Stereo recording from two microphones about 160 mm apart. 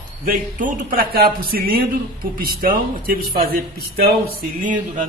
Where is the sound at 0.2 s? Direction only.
55° right (ahead or behind).